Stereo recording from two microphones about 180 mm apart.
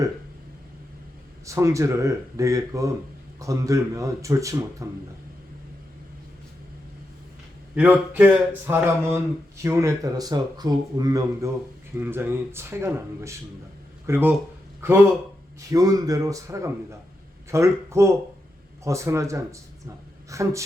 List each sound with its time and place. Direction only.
1.5 s speech: 15° right (ahead or behind)
7.8 s a man's voice: 10° right (ahead or behind)